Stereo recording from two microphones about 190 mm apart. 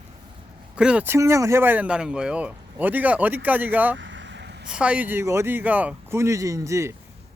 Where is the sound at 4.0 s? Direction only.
75° right (ahead or behind).